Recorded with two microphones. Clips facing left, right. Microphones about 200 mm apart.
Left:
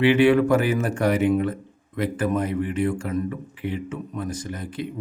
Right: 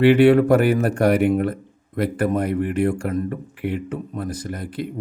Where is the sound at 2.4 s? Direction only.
60° right (ahead or behind).